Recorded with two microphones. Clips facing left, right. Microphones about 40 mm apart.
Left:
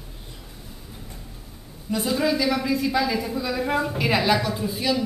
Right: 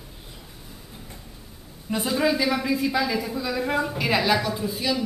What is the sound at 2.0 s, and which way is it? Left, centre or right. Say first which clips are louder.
A woman's voice: even; centre.